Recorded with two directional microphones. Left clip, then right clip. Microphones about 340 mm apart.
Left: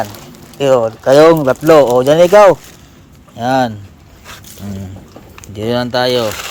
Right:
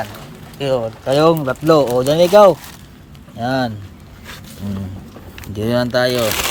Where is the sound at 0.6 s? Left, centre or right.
Centre.